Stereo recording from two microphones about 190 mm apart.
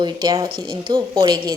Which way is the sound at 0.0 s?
20° right (ahead or behind).